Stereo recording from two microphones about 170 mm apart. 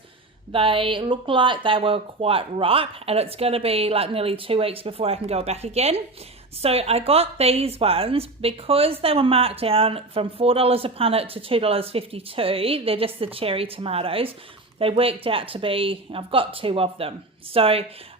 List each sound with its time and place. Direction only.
0.5 s a woman's voice: 30° right (ahead or behind)